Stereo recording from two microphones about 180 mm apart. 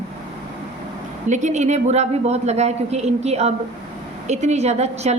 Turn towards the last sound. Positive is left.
turn(degrees=-35)  # may be behind; listen again after turning